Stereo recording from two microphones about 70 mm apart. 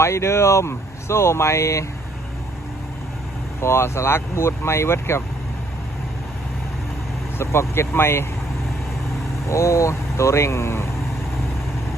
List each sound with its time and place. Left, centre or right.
0.0 s speech: left
3.6 s speech: left
7.3 s speech: left
9.5 s speech: left